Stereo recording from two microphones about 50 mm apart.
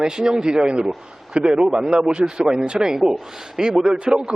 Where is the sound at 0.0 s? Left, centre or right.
Centre.